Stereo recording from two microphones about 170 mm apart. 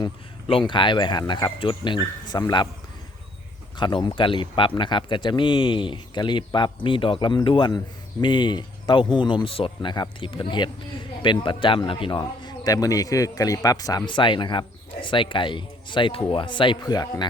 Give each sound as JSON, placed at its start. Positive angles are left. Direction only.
{"t": 0.0, "sound": "speech", "side_deg": 30}
{"t": 3.8, "sound": "speech", "side_deg": 25}